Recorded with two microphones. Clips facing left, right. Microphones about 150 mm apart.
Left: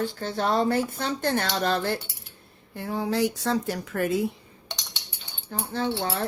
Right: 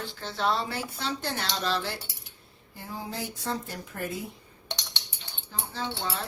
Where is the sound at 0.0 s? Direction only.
50° left (ahead or behind).